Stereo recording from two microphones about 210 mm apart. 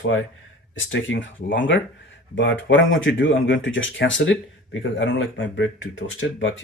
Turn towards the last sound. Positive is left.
turn(degrees=65)  # may be behind; listen again after turning